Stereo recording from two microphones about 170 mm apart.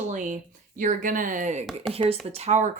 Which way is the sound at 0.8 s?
50° right (ahead or behind).